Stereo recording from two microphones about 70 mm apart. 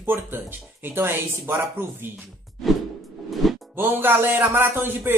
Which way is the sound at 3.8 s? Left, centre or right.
Right.